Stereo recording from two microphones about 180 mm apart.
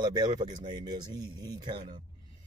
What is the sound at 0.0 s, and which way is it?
Speech, 25° right (ahead or behind).